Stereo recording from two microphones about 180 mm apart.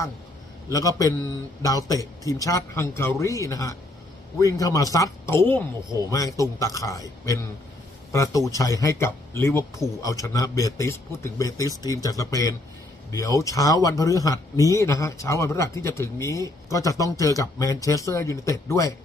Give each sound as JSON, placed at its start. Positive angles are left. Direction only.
{"t": 0.7, "sound": "a man's voice", "side_deg": 20}